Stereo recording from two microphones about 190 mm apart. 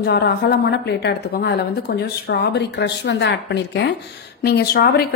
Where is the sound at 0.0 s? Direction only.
60° left (ahead or behind).